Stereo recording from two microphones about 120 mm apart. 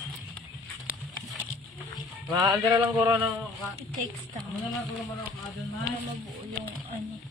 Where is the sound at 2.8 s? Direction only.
25° right (ahead or behind).